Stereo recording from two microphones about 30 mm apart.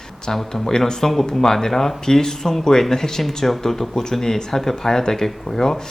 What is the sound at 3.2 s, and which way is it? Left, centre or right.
Speech, centre.